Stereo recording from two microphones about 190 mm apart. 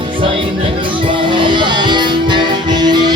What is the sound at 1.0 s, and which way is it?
Music, 25° right (ahead or behind).